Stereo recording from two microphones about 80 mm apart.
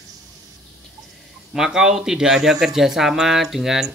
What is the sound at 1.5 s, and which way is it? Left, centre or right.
Speech, centre.